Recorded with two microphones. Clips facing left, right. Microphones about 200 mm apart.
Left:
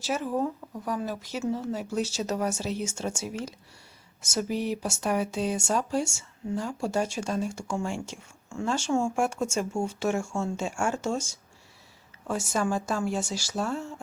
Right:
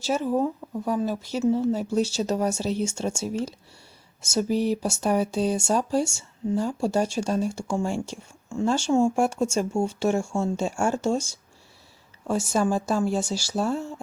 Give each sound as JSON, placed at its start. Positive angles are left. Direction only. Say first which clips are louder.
{"t": 0.0, "sound": "speech", "louder": "right 4 dB", "side_deg": -30}